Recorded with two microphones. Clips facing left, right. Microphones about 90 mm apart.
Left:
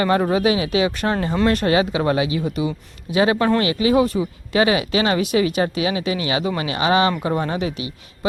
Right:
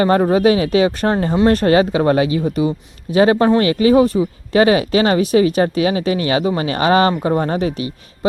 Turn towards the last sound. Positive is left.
turn(degrees=-40)  # may be behind; listen again after turning